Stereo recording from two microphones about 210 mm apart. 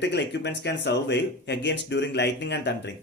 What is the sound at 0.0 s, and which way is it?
Speech, 55° left (ahead or behind).